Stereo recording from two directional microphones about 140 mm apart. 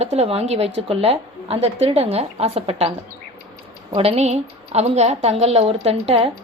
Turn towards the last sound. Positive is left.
turn(degrees=-45)  # may be behind; listen again after turning